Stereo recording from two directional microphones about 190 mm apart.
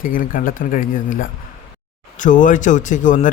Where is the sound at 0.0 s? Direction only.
45° left (ahead or behind).